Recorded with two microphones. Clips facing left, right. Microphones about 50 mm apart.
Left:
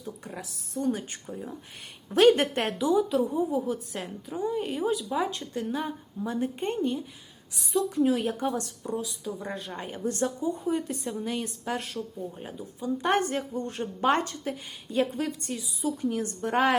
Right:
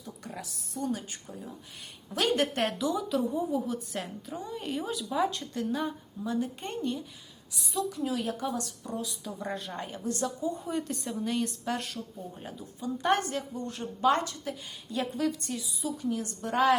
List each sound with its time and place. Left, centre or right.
0.8 s a woman's voice: left
2.8 s a woman's voice: centre
7.7 s a woman's voice: left
9.0 s a woman's voice: centre
9.8 s a woman's voice: left
10.7 s a woman's voice: centre
12.8 s a woman's voice: left
13.3 s a woman's voice: left
16.0 s a woman's voice: left